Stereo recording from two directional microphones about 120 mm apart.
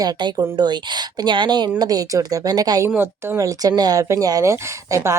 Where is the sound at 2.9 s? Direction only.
20° right (ahead or behind).